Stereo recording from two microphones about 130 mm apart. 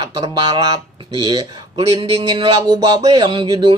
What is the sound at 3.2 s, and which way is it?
Speech, 35° right (ahead or behind).